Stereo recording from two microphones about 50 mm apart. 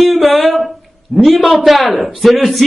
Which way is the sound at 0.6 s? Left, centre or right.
Centre.